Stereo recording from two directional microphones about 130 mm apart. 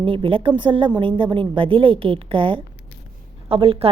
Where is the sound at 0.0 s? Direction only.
45° right (ahead or behind).